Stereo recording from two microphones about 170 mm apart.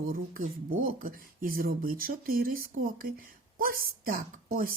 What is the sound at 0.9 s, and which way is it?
Speech, 55° right (ahead or behind).